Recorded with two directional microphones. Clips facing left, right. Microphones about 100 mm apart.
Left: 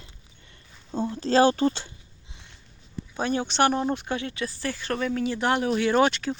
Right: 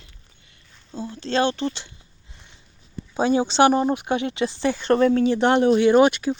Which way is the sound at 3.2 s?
15° right (ahead or behind).